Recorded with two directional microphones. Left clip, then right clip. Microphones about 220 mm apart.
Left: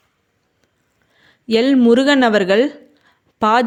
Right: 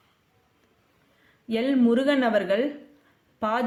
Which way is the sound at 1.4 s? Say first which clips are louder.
Left 10 dB; 45° left (ahead or behind).